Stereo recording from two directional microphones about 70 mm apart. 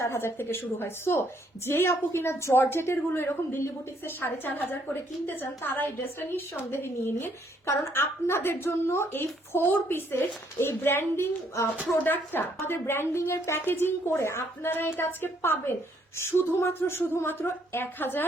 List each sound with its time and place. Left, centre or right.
0.0 s a woman's voice: left